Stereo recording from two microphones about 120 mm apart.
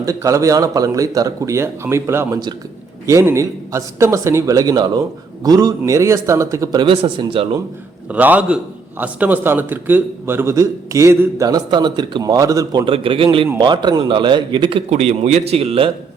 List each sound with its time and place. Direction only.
0.0 s speech: 25° right (ahead or behind)
7.2 s a man's voice: 45° right (ahead or behind)
8.1 s a man's voice: 10° right (ahead or behind)
11.4 s speech: 35° right (ahead or behind)
12.8 s a man's voice: 50° right (ahead or behind)
14.8 s a man's voice: 65° right (ahead or behind)